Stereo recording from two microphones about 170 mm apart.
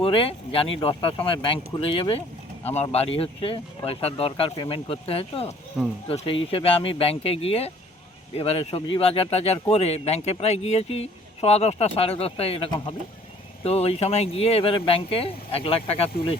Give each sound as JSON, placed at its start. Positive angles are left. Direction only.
{"t": 0.0, "sound": "speech", "side_deg": 30}